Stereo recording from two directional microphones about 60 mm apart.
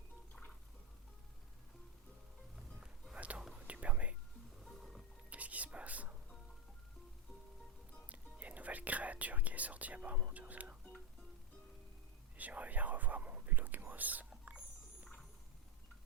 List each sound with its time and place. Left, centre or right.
3.2 s whispering: right
4.6 s music: centre
5.3 s whispering: right
8.1 s whispering: right
12.4 s whispering: right